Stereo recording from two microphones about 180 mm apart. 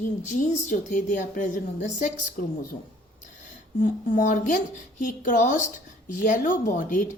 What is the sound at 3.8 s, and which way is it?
Speech, 45° left (ahead or behind).